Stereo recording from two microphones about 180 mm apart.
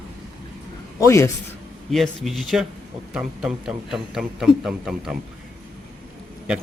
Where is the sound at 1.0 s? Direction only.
15° left (ahead or behind).